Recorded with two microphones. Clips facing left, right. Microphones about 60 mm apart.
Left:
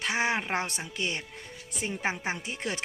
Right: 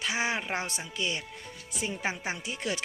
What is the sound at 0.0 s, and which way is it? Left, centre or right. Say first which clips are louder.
Speech: left 2 dB; left.